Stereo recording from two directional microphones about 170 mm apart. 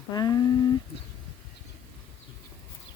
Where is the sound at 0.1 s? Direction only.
25° left (ahead or behind).